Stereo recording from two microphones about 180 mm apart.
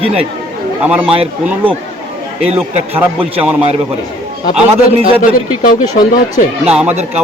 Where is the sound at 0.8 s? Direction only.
5° right (ahead or behind).